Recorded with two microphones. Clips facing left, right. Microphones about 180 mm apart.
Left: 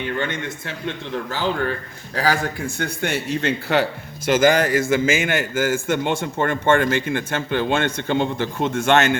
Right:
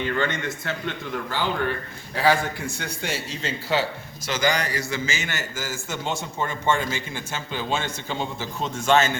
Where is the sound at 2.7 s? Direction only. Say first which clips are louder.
Left 6 dB; 55° left (ahead or behind).